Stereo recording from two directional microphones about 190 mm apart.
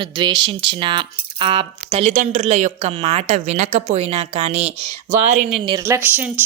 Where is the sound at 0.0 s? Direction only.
25° right (ahead or behind).